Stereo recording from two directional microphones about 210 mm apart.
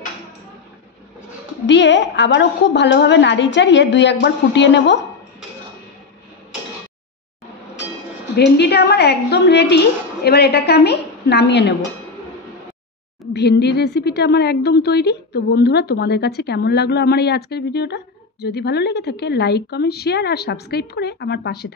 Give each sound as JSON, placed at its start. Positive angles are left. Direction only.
{"t": 1.7, "sound": "a woman's voice", "side_deg": 60}
{"t": 8.4, "sound": "a woman's voice", "side_deg": 50}
{"t": 13.3, "sound": "a woman's voice", "side_deg": 50}